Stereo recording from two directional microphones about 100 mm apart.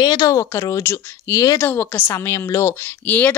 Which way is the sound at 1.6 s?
20° left (ahead or behind).